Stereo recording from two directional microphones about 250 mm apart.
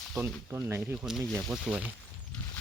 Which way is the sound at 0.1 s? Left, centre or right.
Centre.